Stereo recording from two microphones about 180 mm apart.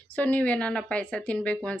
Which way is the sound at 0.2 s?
10° left (ahead or behind).